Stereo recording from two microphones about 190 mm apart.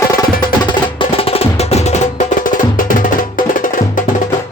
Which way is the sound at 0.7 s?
25° left (ahead or behind).